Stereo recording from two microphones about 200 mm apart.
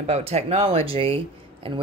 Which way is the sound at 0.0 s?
30° right (ahead or behind).